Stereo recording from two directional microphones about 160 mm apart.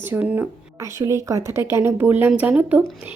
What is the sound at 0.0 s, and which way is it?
Speech, 10° right (ahead or behind).